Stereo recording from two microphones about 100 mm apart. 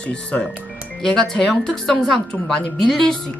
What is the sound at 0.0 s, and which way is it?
A woman's voice, 10° left (ahead or behind).